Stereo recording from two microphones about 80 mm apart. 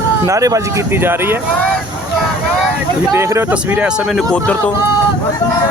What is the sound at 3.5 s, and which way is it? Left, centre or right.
Speech, centre.